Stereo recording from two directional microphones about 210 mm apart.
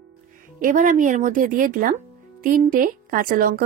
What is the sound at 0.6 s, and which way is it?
A woman's voice, 40° right (ahead or behind).